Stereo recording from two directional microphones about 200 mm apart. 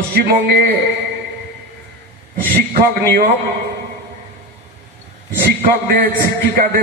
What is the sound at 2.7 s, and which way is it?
Speech, 50° right (ahead or behind).